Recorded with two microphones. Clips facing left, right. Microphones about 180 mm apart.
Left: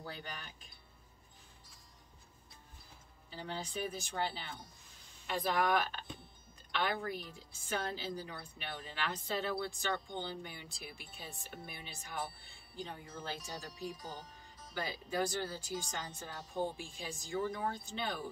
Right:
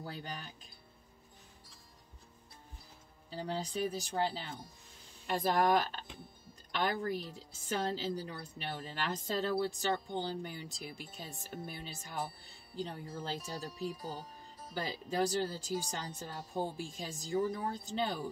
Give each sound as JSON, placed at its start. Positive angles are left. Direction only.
{"t": 0.0, "sound": "speech", "side_deg": -40}
{"t": 3.3, "sound": "a woman's voice", "side_deg": -40}
{"t": 14.7, "sound": "a woman's voice", "side_deg": -40}